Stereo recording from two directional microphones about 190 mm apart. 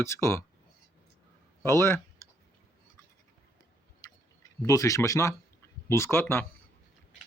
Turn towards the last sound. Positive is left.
turn(degrees=10)  # may be behind; listen again after turning